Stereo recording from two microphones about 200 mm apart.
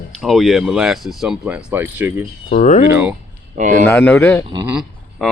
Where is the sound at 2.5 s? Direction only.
40° left (ahead or behind).